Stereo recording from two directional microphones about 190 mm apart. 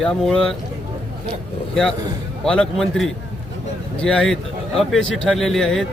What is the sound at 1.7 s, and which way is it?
Speech, 5° left (ahead or behind).